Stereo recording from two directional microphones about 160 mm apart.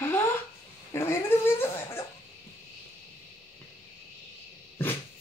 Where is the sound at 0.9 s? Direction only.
15° left (ahead or behind).